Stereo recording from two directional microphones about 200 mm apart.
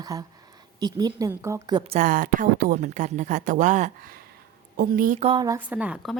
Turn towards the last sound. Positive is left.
turn(degrees=-5)  # may be behind; listen again after turning